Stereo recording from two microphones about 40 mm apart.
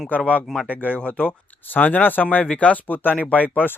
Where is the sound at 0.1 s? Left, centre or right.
Left.